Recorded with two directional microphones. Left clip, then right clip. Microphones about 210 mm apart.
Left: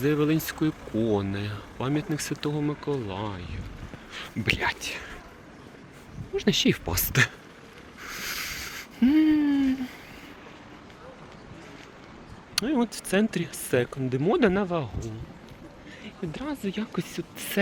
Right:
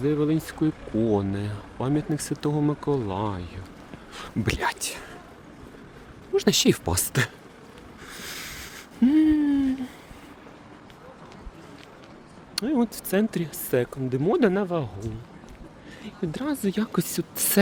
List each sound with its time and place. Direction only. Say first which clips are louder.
0.0 s speech: even; 5° right (ahead or behind); by 5.1 s 30° right (ahead or behind)
6.3 s speech: right 3 dB; 40° right (ahead or behind)
6.9 s speech: left 2 dB; 20° right (ahead or behind)
8.0 s a sound: left 4 dB; 5° right (ahead or behind)
12.5 s speech: right 1 dB; centre (ahead or behind)
16.0 s speech: right 5 dB; 35° right (ahead or behind)